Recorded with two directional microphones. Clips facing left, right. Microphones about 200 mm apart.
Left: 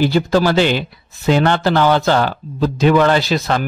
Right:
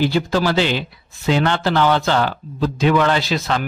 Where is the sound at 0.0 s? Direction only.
45° left (ahead or behind).